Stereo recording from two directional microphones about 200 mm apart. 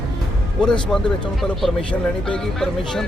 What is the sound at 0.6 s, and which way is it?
Speech, 5° left (ahead or behind).